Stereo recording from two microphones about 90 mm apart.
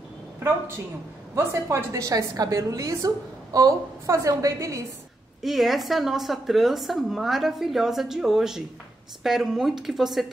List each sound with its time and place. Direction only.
1.3 s a woman's voice: 30° right (ahead or behind)
5.4 s a woman's voice: centre (ahead or behind)